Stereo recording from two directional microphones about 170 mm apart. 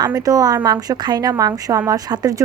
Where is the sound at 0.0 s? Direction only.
20° right (ahead or behind).